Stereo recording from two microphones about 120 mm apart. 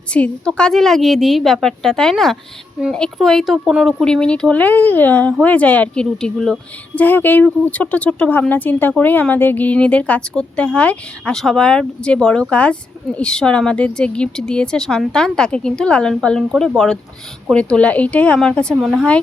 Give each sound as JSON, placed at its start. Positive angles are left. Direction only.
{"t": 0.1, "sound": "a woman's voice", "side_deg": 10}
{"t": 4.0, "sound": "speech", "side_deg": 5}
{"t": 7.0, "sound": "speech", "side_deg": 15}